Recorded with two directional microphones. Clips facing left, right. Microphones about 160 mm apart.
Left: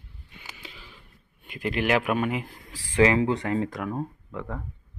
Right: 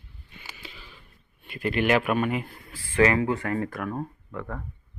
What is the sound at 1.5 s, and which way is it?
Speech, 15° left (ahead or behind).